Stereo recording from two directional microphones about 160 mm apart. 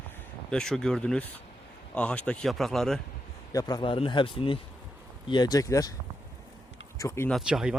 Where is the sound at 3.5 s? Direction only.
25° left (ahead or behind).